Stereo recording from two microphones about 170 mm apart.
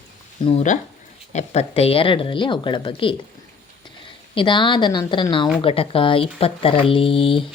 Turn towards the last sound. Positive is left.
turn(degrees=30)  # may be behind; listen again after turning